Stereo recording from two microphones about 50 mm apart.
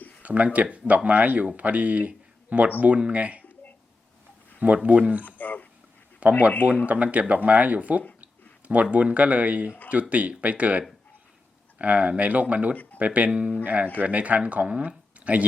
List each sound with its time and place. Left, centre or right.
0.2 s speech: right
4.6 s speech: right
5.2 s speech: left
6.2 s speech: right
12.7 s speech: left
13.0 s speech: right